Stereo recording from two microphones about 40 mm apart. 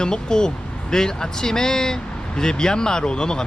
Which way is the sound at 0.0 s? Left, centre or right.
Centre.